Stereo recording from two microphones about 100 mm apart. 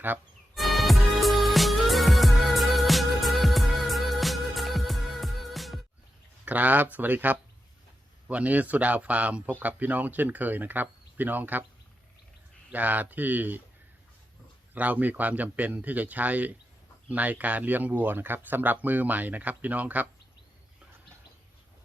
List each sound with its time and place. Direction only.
0.5 s music: centre (ahead or behind)
6.4 s speech: 15° right (ahead or behind)
12.7 s speech: 15° right (ahead or behind)
14.7 s speech: 15° right (ahead or behind)